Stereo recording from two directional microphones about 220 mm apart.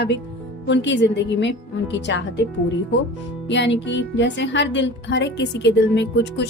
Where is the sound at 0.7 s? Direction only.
55° left (ahead or behind).